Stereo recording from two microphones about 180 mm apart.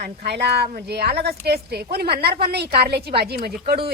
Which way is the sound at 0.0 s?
65° right (ahead or behind).